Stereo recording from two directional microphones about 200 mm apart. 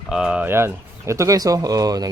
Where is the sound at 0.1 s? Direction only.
5° right (ahead or behind).